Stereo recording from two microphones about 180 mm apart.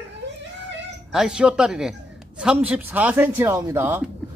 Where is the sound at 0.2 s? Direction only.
70° right (ahead or behind).